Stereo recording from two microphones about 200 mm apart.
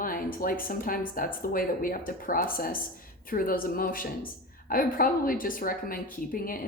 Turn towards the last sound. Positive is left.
turn(degrees=45)  # may be behind; listen again after turning